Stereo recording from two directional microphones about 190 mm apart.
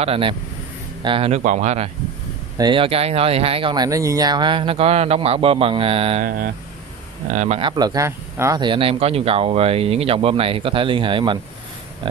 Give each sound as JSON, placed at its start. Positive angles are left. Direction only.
{"t": 0.0, "sound": "speech", "side_deg": -30}
{"t": 2.5, "sound": "speech", "side_deg": -25}
{"t": 6.2, "sound": "speech", "side_deg": -50}
{"t": 7.2, "sound": "speech", "side_deg": -35}